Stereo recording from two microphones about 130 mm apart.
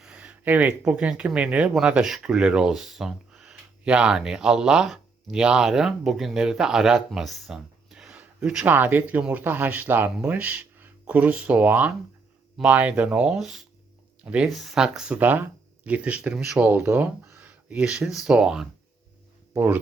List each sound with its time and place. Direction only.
0.0 s speech: 10° right (ahead or behind)
19.5 s speech: 15° right (ahead or behind)